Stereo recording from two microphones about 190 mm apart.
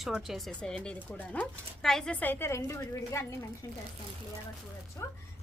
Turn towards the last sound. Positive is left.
turn(degrees=15)  # may be behind; listen again after turning